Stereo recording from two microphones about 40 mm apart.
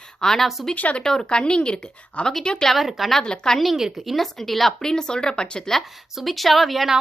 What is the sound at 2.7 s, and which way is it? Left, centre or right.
Speech, centre.